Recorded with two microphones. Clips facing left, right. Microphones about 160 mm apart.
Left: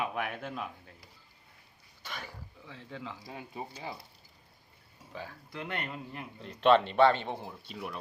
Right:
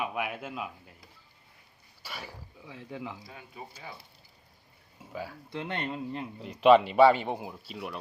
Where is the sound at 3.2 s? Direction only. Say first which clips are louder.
Left 4 dB; 30° left (ahead or behind).